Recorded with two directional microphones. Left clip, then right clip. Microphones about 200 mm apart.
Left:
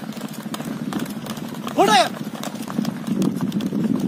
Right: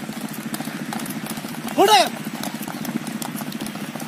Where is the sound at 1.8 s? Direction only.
10° right (ahead or behind).